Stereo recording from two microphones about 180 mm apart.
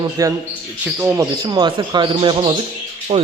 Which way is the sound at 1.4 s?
25° right (ahead or behind).